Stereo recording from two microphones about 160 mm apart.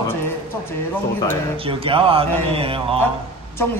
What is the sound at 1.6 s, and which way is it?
A man's voice, 35° right (ahead or behind).